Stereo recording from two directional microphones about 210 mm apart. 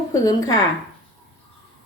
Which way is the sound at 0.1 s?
15° left (ahead or behind).